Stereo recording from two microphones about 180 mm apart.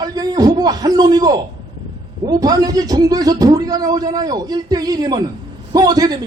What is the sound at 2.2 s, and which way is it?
A man's voice, 20° right (ahead or behind).